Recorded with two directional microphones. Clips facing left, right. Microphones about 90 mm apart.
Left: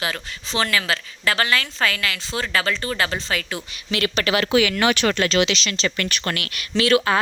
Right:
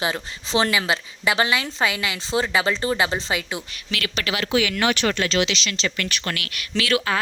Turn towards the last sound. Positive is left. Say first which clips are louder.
# left 4 dB
turn(degrees=40)  # may be behind; listen again after turning